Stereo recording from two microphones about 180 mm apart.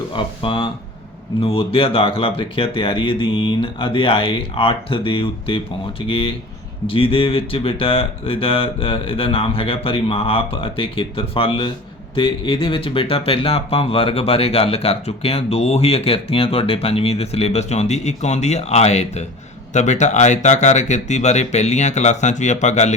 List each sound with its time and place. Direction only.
0.2 s speech: 30° left (ahead or behind)